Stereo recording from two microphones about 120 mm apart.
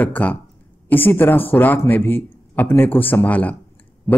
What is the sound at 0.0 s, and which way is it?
A man's voice, 15° left (ahead or behind).